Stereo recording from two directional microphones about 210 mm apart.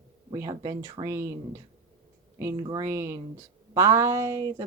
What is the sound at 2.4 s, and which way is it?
A woman's voice, 10° right (ahead or behind).